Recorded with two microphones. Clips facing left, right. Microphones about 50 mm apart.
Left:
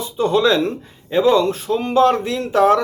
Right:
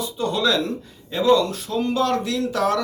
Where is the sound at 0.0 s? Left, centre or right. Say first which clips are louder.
Left 6 dB; left.